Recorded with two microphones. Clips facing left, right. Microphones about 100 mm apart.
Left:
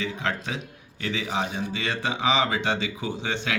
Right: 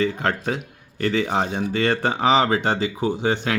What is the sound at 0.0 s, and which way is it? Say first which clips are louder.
Speech: right 7 dB; 50° right (ahead or behind).